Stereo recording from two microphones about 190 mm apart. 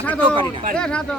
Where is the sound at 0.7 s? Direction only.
5° left (ahead or behind).